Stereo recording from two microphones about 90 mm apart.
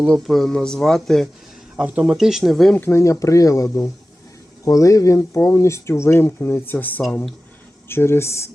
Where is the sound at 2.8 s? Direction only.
25° left (ahead or behind).